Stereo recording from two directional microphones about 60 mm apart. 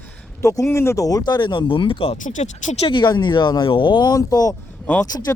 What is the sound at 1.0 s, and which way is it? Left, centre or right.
Speech, left.